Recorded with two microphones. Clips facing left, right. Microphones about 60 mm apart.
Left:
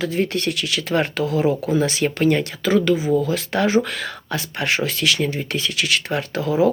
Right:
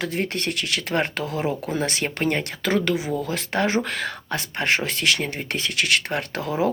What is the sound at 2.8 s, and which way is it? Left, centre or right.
Speech, right.